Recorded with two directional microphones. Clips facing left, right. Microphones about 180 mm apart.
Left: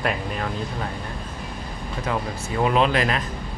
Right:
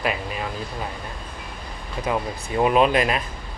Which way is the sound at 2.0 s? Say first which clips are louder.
Right 2 dB; 20° right (ahead or behind).